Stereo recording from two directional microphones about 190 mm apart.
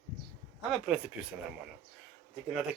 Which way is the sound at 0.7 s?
5° right (ahead or behind).